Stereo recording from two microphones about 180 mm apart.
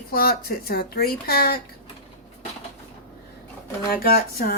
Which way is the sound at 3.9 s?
60° left (ahead or behind).